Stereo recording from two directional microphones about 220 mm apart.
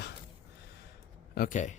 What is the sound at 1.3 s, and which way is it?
Speech, 40° left (ahead or behind).